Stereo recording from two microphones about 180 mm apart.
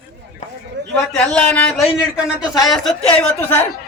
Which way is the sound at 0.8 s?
75° right (ahead or behind).